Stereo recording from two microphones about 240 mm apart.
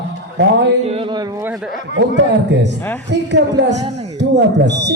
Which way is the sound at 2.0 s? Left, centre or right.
Right.